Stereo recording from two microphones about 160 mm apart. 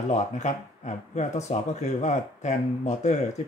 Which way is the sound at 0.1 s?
45° left (ahead or behind).